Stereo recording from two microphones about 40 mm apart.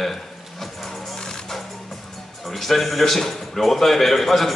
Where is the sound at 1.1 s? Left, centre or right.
Centre.